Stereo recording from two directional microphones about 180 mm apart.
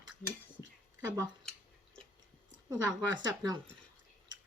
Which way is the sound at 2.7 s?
25° right (ahead or behind).